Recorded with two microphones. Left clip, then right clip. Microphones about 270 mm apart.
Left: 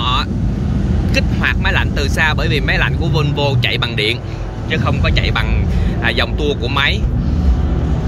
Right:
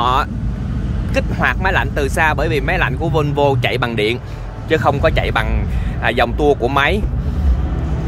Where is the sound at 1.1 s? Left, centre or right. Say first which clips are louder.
Right 1 dB; centre.